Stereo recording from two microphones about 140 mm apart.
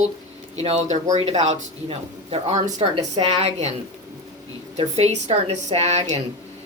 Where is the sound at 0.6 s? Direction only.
50° right (ahead or behind).